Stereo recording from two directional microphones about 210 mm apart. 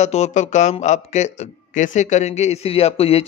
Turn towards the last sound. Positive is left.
turn(degrees=30)  # may be behind; listen again after turning